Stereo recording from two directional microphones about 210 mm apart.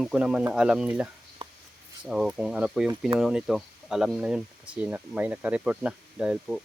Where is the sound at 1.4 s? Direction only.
25° right (ahead or behind).